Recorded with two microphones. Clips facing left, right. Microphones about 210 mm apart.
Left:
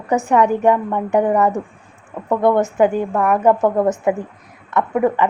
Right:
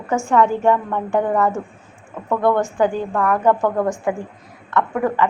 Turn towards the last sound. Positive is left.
turn(degrees=20)  # may be behind; listen again after turning